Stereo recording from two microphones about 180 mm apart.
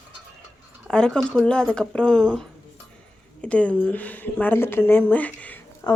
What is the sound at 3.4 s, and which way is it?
Speech, 5° left (ahead or behind).